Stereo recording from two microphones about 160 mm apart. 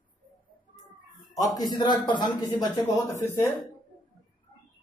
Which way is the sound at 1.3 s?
20° left (ahead or behind).